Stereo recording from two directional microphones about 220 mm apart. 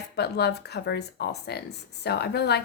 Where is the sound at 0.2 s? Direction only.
50° left (ahead or behind).